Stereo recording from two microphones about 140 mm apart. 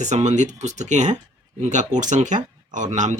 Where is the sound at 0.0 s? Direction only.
55° right (ahead or behind).